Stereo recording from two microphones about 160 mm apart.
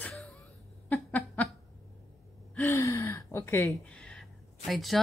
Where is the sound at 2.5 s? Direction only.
15° left (ahead or behind).